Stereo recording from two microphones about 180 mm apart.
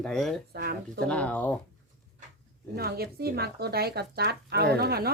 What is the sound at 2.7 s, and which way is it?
Speech, 60° right (ahead or behind).